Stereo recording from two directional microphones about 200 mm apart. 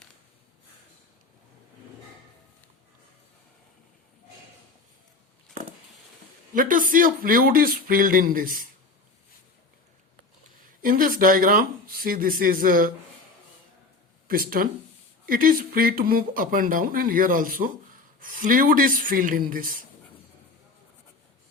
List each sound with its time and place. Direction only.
6.5 s speech: 40° right (ahead or behind)
10.8 s speech: 45° right (ahead or behind)
14.3 s speech: 45° right (ahead or behind)